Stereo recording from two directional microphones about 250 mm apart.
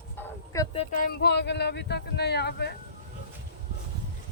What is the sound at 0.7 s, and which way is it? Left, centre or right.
Speech, left.